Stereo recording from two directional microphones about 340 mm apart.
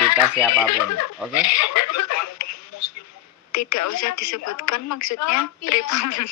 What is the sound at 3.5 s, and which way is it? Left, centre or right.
A woman's voice, left.